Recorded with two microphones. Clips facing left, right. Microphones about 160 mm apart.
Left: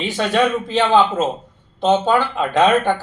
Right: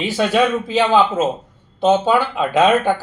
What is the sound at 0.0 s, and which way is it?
Speech, 5° right (ahead or behind).